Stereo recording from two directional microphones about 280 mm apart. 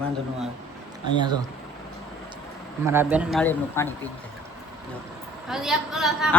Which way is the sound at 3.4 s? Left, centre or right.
Centre.